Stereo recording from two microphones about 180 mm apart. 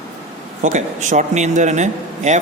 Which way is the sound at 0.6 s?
45° right (ahead or behind).